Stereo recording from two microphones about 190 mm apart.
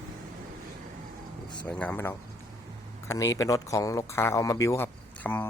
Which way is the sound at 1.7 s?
10° left (ahead or behind).